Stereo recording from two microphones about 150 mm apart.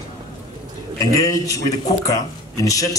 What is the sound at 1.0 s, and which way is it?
A man's voice, 25° left (ahead or behind).